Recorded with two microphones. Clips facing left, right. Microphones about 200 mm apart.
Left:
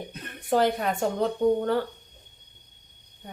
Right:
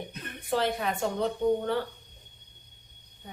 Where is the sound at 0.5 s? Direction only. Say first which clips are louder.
Left 5 dB; 45° left (ahead or behind).